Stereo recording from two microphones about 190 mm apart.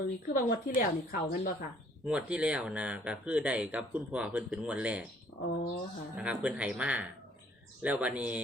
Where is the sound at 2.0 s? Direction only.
5° right (ahead or behind).